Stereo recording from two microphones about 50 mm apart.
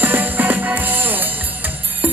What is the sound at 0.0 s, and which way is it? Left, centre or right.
Music, right.